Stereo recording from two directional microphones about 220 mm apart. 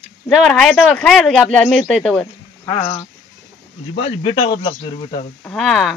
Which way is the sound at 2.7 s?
30° left (ahead or behind).